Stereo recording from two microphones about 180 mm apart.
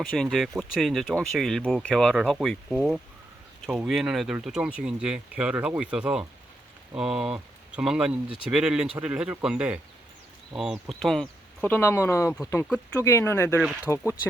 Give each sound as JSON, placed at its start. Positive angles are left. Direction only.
{"t": 0.0, "sound": "speech", "side_deg": 0}
{"t": 12.6, "sound": "speech", "side_deg": 0}
{"t": 13.0, "sound": "speech", "side_deg": 15}